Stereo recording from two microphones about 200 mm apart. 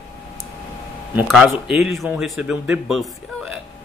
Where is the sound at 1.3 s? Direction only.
Centre (ahead or behind).